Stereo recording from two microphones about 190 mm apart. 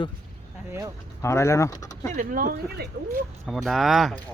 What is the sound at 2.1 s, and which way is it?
Speech, 45° right (ahead or behind).